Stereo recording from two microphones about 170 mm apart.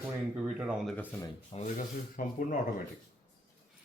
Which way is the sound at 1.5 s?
35° left (ahead or behind).